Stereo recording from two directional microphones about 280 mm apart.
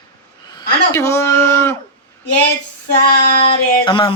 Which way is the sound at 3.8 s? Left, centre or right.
Centre.